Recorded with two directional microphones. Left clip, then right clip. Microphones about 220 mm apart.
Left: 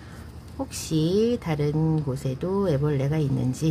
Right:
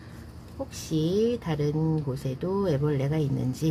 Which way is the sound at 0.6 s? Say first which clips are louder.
Left 3 dB; 20° left (ahead or behind).